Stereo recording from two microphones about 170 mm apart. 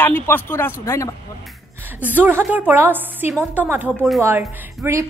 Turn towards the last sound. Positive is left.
turn(degrees=-15)  # may be behind; listen again after turning